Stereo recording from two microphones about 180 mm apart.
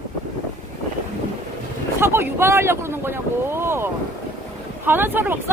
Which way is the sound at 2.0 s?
15° right (ahead or behind).